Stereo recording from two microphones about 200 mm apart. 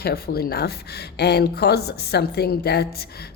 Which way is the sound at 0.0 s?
50° left (ahead or behind).